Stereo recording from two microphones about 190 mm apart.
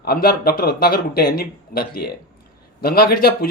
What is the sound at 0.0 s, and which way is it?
Speech, 55° left (ahead or behind).